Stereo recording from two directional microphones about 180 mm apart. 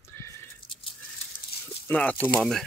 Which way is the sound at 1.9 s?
10° left (ahead or behind).